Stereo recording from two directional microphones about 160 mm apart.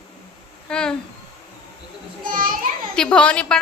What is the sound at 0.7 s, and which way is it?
Speech, 5° left (ahead or behind).